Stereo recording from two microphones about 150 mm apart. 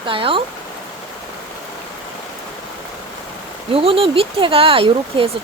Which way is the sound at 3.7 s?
40° right (ahead or behind).